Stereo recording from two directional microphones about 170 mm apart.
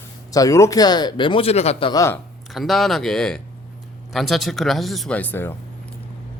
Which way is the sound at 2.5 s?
Centre (ahead or behind).